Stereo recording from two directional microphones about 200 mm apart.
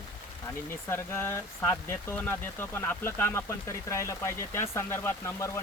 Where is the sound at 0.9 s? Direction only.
10° left (ahead or behind).